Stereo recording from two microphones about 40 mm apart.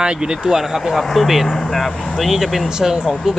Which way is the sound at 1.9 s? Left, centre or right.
Left.